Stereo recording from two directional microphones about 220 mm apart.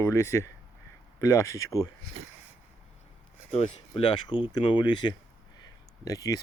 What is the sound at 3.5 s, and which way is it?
Speech, 30° left (ahead or behind).